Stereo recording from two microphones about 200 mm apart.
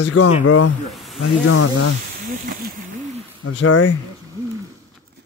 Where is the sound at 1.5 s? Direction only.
90° left.